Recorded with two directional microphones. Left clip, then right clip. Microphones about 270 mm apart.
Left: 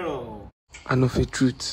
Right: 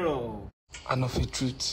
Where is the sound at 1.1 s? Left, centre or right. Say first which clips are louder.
Left 8 dB; centre.